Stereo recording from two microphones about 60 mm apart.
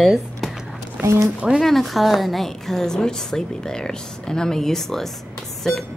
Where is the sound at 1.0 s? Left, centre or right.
Right.